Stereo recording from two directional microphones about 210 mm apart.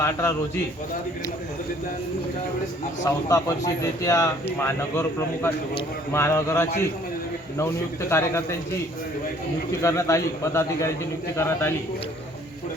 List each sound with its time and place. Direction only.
0.0 s a man's voice: 10° left (ahead or behind)
3.0 s a man's voice: 15° left (ahead or behind)
8.1 s a man's voice: 10° left (ahead or behind)
9.8 s a man's voice: 15° left (ahead or behind)